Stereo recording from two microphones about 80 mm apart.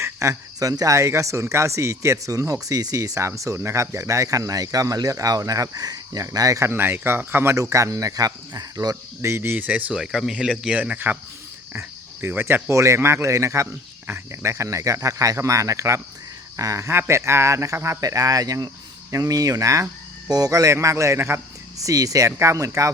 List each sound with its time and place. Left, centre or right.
0.0 s speech: right
7.5 s speech: right
9.3 s speech: right
9.6 s speech: centre
11.7 s cricket: right
12.3 s speech: right
21.2 s speech: right
21.8 s speech: right